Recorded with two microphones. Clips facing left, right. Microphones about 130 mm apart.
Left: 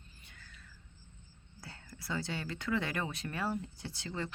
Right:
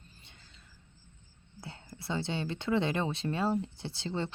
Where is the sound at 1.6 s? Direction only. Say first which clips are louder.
Right 4 dB; 25° right (ahead or behind).